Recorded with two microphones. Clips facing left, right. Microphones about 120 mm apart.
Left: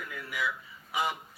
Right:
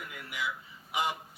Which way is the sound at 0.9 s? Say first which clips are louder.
Even; 20° right (ahead or behind).